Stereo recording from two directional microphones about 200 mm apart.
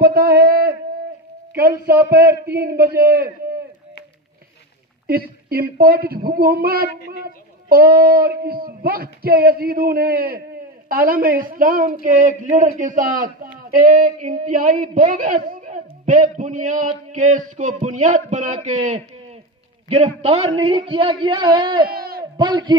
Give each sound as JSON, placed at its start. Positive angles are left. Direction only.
{"t": 0.0, "sound": "a sound", "side_deg": -50}
{"t": 2.0, "sound": "speech", "side_deg": -50}
{"t": 5.0, "sound": "a man's voice", "side_deg": -50}
{"t": 21.8, "sound": "crowd", "side_deg": -50}
{"t": 22.4, "sound": "a man's voice", "side_deg": -20}